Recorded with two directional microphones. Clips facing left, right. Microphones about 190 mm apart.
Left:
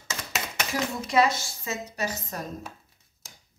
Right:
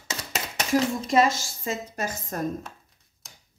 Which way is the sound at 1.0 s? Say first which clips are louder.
Right 2 dB; 45° right (ahead or behind).